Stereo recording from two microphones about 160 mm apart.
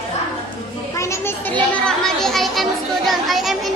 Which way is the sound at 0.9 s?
20° left (ahead or behind).